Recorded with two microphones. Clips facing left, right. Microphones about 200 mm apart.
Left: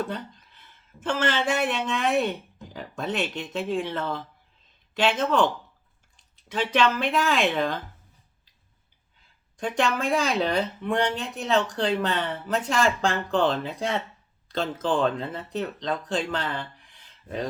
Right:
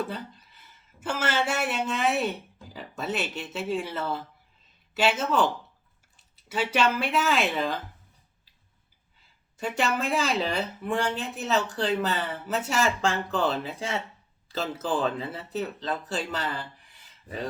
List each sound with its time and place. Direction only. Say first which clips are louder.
0.0 s speech: left 2 dB; 5° right (ahead or behind)
9.6 s speech: left 2 dB; 5° right (ahead or behind)